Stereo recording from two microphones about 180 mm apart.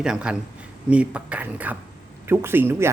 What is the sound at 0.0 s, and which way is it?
Speech, 5° right (ahead or behind).